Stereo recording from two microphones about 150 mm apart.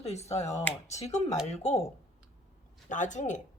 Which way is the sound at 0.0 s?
45° left (ahead or behind).